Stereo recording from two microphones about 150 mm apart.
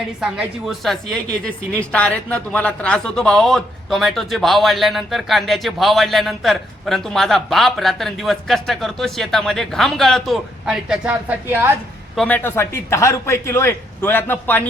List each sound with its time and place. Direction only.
0.2 s a woman's voice: 5° right (ahead or behind)
12.1 s a man's voice: 10° left (ahead or behind)